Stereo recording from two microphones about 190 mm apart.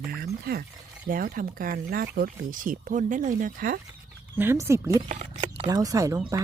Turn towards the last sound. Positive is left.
turn(degrees=-15)  # may be behind; listen again after turning